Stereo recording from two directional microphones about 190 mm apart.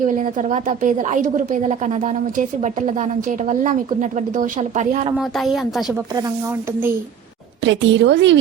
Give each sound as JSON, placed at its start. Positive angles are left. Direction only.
{"t": 0.0, "sound": "speech", "side_deg": -45}
{"t": 4.4, "sound": "speech", "side_deg": -40}
{"t": 7.6, "sound": "a woman's voice", "side_deg": -70}